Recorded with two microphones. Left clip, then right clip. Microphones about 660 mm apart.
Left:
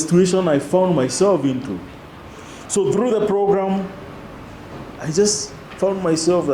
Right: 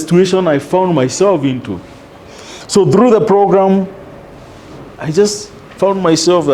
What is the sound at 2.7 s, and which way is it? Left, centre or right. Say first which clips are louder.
A man's voice: right 9 dB; right.